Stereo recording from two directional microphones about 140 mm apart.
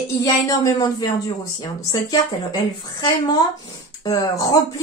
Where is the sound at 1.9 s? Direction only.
30° left (ahead or behind).